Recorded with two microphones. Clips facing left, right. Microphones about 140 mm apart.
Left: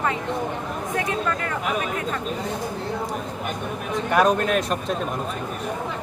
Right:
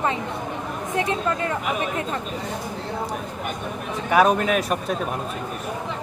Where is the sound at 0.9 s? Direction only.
25° right (ahead or behind).